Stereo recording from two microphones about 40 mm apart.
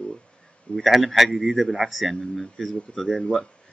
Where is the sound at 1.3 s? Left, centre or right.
Centre.